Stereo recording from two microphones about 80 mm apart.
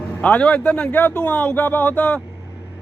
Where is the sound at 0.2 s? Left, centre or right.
Centre.